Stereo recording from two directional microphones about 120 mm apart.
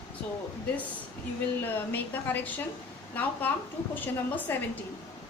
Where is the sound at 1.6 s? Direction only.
15° left (ahead or behind).